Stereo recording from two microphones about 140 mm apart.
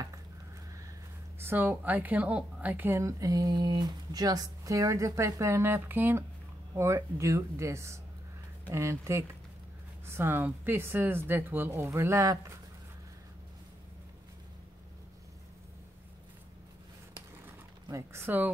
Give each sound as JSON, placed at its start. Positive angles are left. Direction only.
{"t": 1.4, "sound": "a woman's voice", "side_deg": -15}
{"t": 17.8, "sound": "a woman's voice", "side_deg": -20}